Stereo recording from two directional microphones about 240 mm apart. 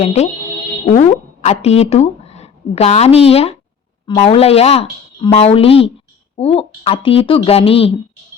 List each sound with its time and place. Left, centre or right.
0.0 s speech: left